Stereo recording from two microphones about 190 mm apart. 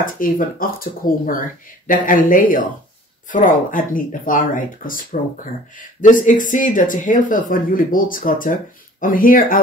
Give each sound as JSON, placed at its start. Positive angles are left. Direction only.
{"t": 0.0, "sound": "speech", "side_deg": 45}